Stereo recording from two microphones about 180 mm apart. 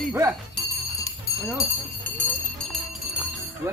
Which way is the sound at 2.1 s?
10° left (ahead or behind).